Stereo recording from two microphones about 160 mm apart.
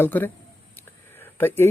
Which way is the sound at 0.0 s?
10° left (ahead or behind).